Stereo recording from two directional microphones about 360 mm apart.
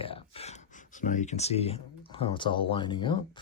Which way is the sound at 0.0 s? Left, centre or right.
Centre.